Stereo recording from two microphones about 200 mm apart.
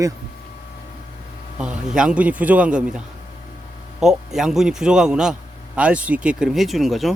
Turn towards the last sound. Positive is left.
turn(degrees=0)  # may be behind; listen again after turning